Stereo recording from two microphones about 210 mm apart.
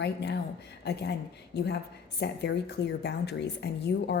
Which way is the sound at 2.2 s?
55° left (ahead or behind).